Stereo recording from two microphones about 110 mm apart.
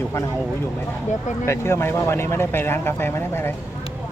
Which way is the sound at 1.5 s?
25° left (ahead or behind).